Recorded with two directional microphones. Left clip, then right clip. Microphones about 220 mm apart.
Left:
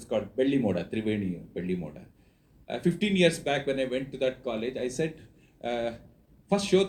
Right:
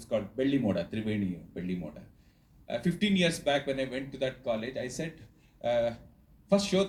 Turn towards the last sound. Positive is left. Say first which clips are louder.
# left 2 dB
turn(degrees=35)  # may be behind; listen again after turning